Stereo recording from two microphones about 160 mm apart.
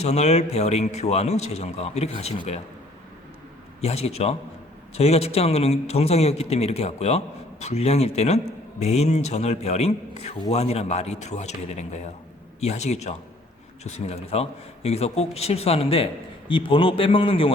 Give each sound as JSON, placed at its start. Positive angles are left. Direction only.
{"t": 0.0, "sound": "a man's voice", "side_deg": 45}
{"t": 3.8, "sound": "a man's voice", "side_deg": 40}